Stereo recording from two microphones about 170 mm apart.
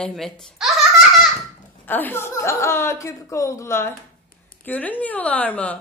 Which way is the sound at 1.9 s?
10° left (ahead or behind).